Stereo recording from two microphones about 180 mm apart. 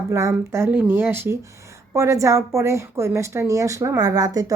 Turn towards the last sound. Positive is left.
turn(degrees=-20)  # may be behind; listen again after turning